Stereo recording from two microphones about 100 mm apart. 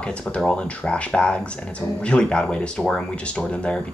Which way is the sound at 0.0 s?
10° left (ahead or behind).